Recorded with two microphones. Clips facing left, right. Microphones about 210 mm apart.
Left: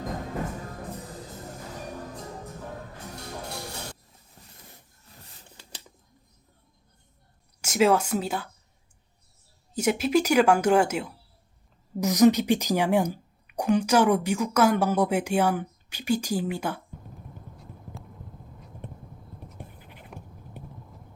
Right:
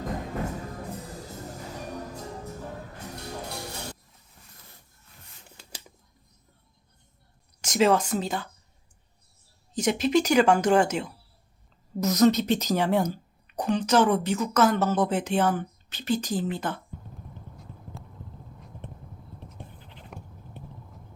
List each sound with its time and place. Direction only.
4.4 s a sound: 35° left (ahead or behind)
7.6 s speech: 5° left (ahead or behind)
9.7 s a woman's voice: 10° left (ahead or behind)
19.4 s scratch: 10° left (ahead or behind)